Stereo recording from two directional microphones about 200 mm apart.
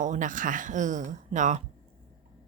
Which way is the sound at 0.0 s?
40° right (ahead or behind).